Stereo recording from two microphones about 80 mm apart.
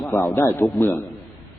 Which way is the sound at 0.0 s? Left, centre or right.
Left.